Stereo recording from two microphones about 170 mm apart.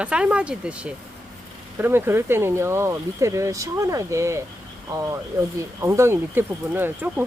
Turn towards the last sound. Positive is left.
turn(degrees=-10)  # may be behind; listen again after turning